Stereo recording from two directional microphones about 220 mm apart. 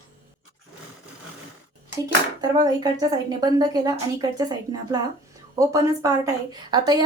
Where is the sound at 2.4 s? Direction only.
20° right (ahead or behind).